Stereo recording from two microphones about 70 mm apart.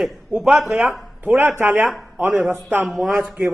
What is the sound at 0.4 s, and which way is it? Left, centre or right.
Speech, centre.